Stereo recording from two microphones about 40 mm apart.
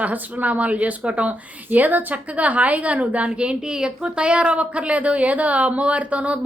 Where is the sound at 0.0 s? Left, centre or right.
Right.